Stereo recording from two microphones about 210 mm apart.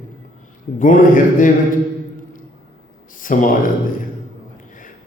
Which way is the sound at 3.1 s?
40° left (ahead or behind).